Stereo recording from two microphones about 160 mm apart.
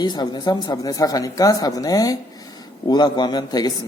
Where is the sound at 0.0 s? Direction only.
25° left (ahead or behind).